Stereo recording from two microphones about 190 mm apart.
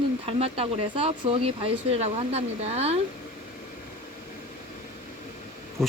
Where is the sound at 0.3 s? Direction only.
30° right (ahead or behind).